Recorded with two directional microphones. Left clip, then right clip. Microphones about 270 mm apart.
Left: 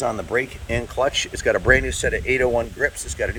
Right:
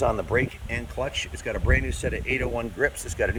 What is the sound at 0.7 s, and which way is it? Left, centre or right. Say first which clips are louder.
Speech: left 8 dB; centre.